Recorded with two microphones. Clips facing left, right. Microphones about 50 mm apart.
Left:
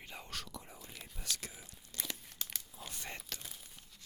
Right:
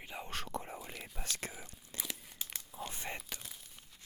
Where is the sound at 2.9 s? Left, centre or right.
Centre.